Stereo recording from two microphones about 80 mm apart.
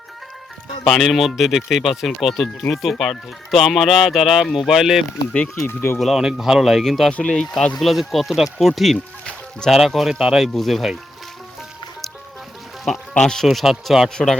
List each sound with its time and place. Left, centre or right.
0.9 s speech: centre
5.6 s speech: left
6.0 s speech: centre
7.1 s speech: centre
9.2 s music: centre
9.7 s speech: centre
13.1 s speech: centre